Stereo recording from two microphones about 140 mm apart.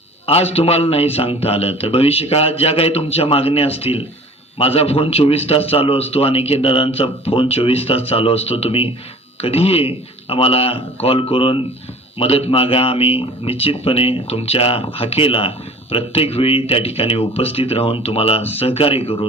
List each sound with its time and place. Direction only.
0.3 s speech: 45° left (ahead or behind)